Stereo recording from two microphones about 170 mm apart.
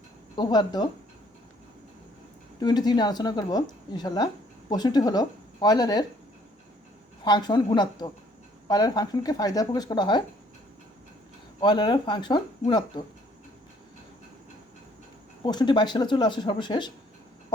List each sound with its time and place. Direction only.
0.3 s speech: 25° left (ahead or behind)
2.6 s speech: 25° left (ahead or behind)
7.3 s speech: 25° left (ahead or behind)
11.6 s speech: 25° left (ahead or behind)
15.4 s speech: 25° left (ahead or behind)